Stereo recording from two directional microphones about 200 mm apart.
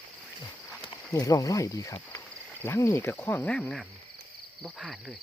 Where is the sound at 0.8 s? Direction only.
20° left (ahead or behind); by 3.8 s 5° left (ahead or behind).